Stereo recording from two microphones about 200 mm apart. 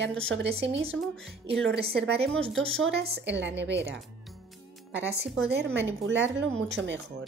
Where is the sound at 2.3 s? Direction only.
5° left (ahead or behind).